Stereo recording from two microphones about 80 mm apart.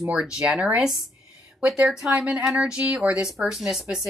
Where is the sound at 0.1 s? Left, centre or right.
Centre.